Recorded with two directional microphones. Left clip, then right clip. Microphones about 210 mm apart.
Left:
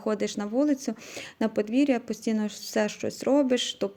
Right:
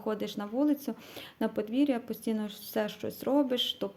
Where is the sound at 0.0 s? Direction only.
30° left (ahead or behind).